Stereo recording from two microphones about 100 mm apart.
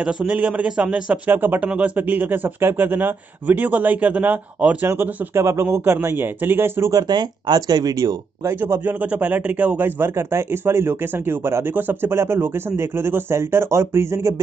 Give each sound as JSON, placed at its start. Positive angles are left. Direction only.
{"t": 0.0, "sound": "a man's voice", "side_deg": -10}
{"t": 7.0, "sound": "speech", "side_deg": -45}
{"t": 9.0, "sound": "speech", "side_deg": -15}